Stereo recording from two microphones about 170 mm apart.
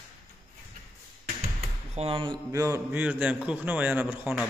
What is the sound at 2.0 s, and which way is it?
Speech, 30° right (ahead or behind).